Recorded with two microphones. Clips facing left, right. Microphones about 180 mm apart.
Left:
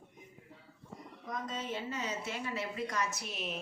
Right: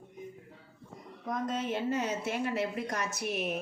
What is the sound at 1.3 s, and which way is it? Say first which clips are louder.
A woman's voice: right 6 dB; 60° right (ahead or behind).